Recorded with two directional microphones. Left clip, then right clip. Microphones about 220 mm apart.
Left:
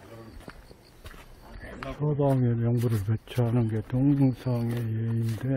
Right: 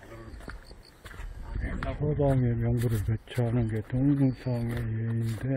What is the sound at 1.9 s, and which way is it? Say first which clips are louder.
A man's voice: left 1 dB; 20° left (ahead or behind).